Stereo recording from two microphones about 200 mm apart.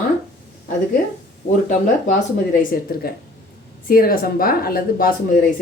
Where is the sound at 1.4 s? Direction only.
50° left (ahead or behind).